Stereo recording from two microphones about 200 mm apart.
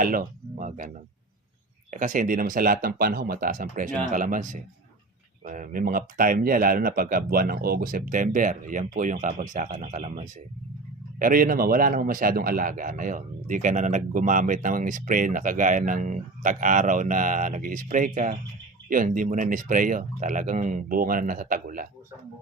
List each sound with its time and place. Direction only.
0.0 s speech: 45° right (ahead or behind)
1.9 s speech: 40° right (ahead or behind)